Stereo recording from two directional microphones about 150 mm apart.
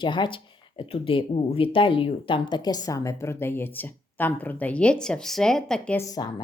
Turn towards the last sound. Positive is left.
turn(degrees=25)  # may be behind; listen again after turning